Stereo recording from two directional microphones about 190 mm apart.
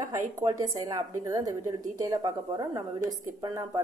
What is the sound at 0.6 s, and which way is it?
A woman's voice, 15° right (ahead or behind).